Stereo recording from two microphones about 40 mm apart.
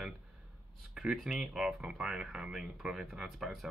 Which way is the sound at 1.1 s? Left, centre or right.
Centre.